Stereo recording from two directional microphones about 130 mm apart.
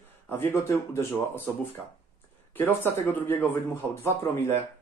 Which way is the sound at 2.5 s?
15° left (ahead or behind).